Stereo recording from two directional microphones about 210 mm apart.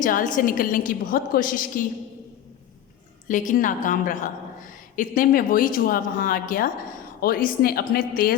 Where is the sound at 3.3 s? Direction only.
35° left (ahead or behind).